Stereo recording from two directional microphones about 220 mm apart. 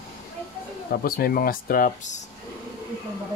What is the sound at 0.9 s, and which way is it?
Speech, 45° left (ahead or behind).